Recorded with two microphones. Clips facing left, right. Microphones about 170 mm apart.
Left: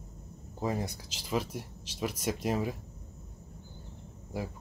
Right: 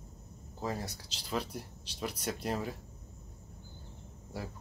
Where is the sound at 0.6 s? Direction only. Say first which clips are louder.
Left 4 dB; 15° left (ahead or behind).